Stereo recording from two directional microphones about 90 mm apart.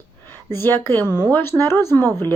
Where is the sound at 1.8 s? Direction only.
25° left (ahead or behind).